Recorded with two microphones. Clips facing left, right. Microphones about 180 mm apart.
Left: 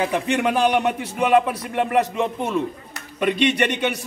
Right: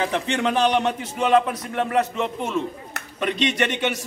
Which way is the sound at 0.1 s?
10° left (ahead or behind).